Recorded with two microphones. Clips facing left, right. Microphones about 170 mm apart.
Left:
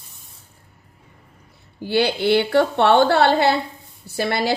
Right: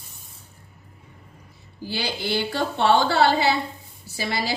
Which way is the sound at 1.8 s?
60° left (ahead or behind).